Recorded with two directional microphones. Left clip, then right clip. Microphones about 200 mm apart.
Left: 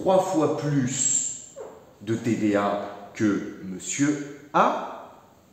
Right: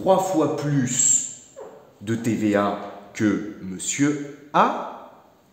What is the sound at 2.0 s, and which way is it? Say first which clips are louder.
Speech: right 1 dB; 50° right (ahead or behind).